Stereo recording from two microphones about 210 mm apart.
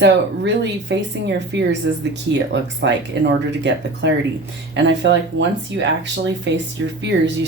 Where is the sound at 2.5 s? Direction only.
55° right (ahead or behind).